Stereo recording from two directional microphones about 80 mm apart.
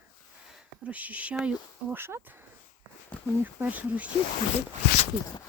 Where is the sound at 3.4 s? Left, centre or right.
Right.